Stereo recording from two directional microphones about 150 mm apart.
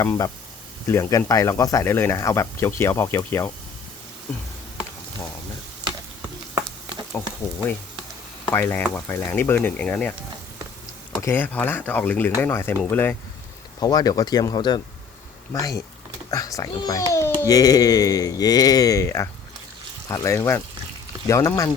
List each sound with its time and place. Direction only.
0.0 s a child's voice: 20° left (ahead or behind)
7.2 s speech: 15° left (ahead or behind)
8.5 s speech: 15° left (ahead or behind)
11.2 s speech: 15° left (ahead or behind)
13.7 s a child's voice: 25° left (ahead or behind)